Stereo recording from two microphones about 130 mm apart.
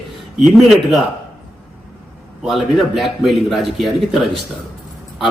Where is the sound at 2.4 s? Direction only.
Centre (ahead or behind).